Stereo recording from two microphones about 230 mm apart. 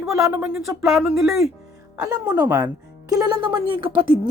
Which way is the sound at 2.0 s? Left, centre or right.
Centre.